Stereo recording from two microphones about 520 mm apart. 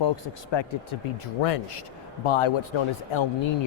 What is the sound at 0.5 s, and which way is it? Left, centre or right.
Speech, left.